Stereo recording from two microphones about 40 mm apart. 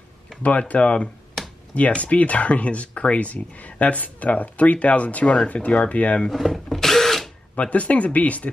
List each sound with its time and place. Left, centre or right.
0.4 s speech: left
6.3 s drill: centre
7.5 s speech: left